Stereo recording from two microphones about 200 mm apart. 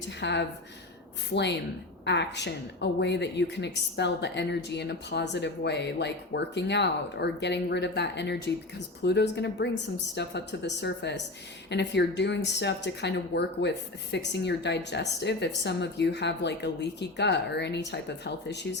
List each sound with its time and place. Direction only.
0.2 s a woman's voice: 60° left (ahead or behind)